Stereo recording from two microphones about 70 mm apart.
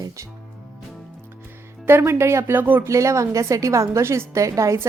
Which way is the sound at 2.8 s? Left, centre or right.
Right.